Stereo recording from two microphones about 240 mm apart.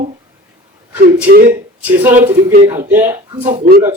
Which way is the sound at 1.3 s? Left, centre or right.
Right.